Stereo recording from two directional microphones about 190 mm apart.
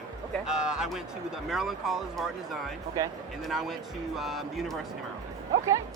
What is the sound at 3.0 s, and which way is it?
Speech, 15° right (ahead or behind).